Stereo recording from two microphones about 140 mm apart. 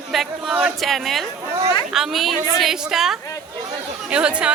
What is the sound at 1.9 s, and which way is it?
Speech, centre (ahead or behind).